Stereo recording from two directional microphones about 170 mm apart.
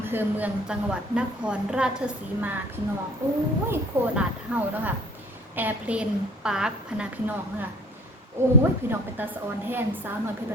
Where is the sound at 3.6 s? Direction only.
10° right (ahead or behind).